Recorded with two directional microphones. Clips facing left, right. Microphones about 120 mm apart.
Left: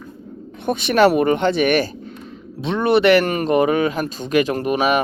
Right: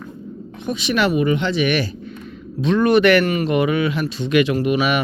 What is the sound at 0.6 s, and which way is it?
Speech, 55° left (ahead or behind).